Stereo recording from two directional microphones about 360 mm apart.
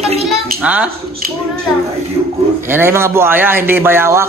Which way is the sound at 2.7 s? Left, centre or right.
Centre.